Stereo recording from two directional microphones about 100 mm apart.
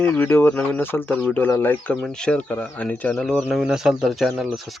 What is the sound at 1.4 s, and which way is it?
Speech, 20° left (ahead or behind).